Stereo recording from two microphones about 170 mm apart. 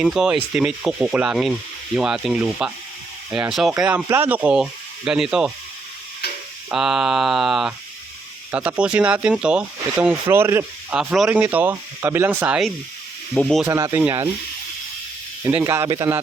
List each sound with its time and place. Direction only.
0.0 s speech: 5° right (ahead or behind)
6.7 s speech: 5° right (ahead or behind)
8.8 s speech: 5° right (ahead or behind)
13.7 s speech: 15° right (ahead or behind)
15.4 s speech: 15° right (ahead or behind)